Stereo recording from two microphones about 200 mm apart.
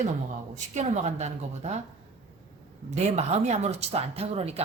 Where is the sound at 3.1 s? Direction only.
35° right (ahead or behind).